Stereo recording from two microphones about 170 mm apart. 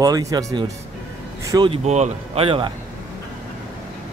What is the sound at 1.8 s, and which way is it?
Speech, 40° right (ahead or behind).